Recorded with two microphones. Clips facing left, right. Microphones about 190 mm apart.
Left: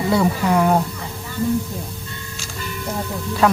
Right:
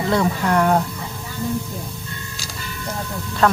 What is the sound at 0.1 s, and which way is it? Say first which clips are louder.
Speech: left 1 dB; 5° left (ahead or behind).